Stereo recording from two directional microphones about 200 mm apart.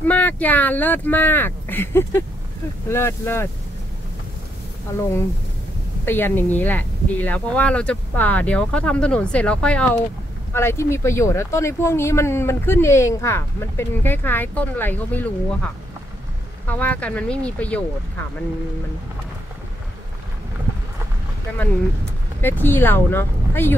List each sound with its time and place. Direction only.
0.0 s speech: 10° left (ahead or behind)
6.0 s speech: 10° left (ahead or behind)
22.4 s speech: 10° left (ahead or behind)